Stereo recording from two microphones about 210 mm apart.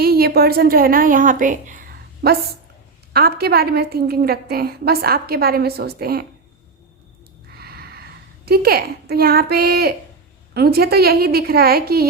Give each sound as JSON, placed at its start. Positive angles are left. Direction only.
{"t": 0.0, "sound": "a woman's voice", "side_deg": -50}
{"t": 7.5, "sound": "a sound", "side_deg": -50}
{"t": 8.4, "sound": "a woman's voice", "side_deg": -45}